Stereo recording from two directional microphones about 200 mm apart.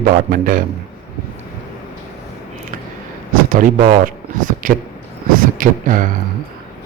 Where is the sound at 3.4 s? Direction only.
40° right (ahead or behind).